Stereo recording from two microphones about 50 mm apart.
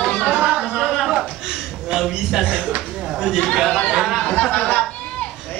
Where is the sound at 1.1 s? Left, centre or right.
Centre.